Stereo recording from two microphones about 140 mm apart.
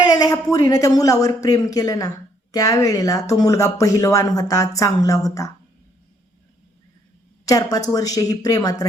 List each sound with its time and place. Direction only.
0.0 s a woman's voice: 25° left (ahead or behind)
7.4 s a woman's voice: 25° left (ahead or behind)